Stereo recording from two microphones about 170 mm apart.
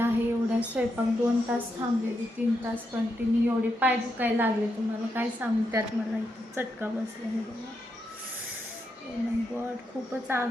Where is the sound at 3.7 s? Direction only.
10° right (ahead or behind).